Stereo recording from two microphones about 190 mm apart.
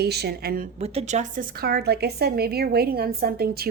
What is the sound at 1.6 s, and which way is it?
A woman's voice, 55° right (ahead or behind).